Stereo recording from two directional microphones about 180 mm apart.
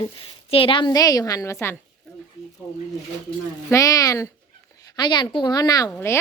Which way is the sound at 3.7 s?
15° left (ahead or behind).